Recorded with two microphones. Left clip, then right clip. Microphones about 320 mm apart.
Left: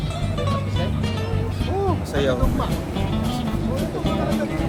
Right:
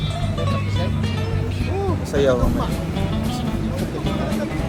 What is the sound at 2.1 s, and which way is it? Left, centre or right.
Speech, centre.